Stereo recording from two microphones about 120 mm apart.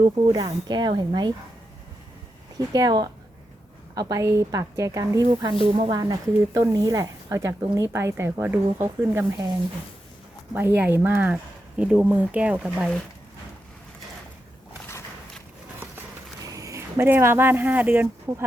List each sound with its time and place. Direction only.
0.0 s speech: 35° right (ahead or behind)
2.6 s speech: 35° right (ahead or behind)
10.5 s speech: 15° right (ahead or behind)
16.4 s speech: 30° right (ahead or behind); by 18.1 s 15° right (ahead or behind)